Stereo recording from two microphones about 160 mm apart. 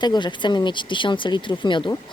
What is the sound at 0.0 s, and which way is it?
Speech, 30° left (ahead or behind).